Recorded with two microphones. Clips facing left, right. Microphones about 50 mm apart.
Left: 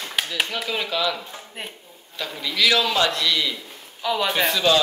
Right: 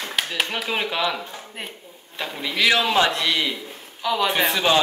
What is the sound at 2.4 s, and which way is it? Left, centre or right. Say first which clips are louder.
A man's voice: right 1 dB; right.